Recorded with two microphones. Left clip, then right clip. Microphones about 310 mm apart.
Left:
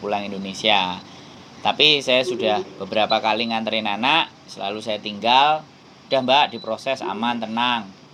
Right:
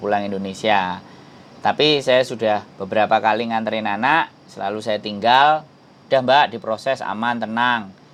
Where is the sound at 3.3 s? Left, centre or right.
Right.